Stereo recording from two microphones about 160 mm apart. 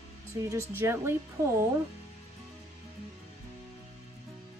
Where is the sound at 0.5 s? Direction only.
15° right (ahead or behind).